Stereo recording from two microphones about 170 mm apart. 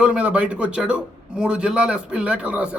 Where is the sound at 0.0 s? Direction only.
5° right (ahead or behind).